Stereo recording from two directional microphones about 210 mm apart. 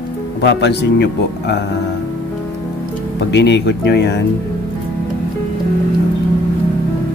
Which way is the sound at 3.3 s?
55° left (ahead or behind).